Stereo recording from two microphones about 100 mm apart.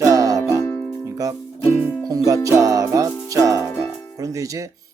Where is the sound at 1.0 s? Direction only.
30° right (ahead or behind).